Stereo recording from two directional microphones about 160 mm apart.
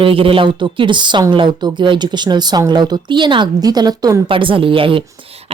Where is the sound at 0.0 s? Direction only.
35° right (ahead or behind).